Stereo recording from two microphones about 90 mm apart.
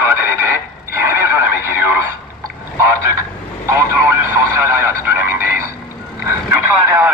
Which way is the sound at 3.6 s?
30° right (ahead or behind).